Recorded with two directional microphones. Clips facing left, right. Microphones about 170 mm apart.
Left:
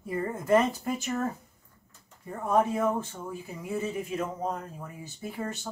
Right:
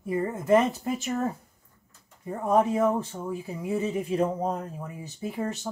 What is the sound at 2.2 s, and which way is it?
Speech, 20° right (ahead or behind).